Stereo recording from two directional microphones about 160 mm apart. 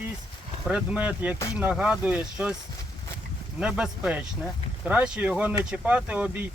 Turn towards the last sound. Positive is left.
turn(degrees=-10)  # may be behind; listen again after turning